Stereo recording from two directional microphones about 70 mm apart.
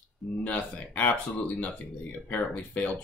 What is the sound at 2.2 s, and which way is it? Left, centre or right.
Speech, left.